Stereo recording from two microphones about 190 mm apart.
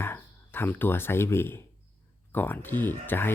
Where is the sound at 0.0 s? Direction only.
10° left (ahead or behind).